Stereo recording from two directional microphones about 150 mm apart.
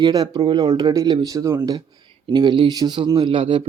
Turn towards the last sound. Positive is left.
turn(degrees=-35)  # may be behind; listen again after turning